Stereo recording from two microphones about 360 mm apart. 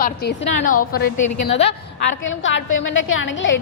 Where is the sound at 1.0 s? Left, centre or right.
Left.